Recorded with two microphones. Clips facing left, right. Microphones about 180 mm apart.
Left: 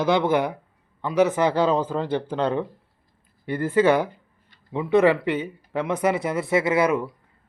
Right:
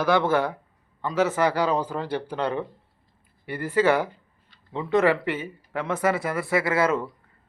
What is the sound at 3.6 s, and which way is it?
Speech, 20° left (ahead or behind).